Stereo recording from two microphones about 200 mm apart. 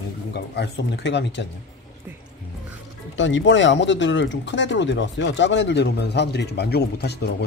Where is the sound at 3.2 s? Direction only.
70° left (ahead or behind).